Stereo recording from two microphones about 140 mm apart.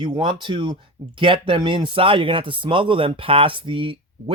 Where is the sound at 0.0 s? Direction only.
35° right (ahead or behind).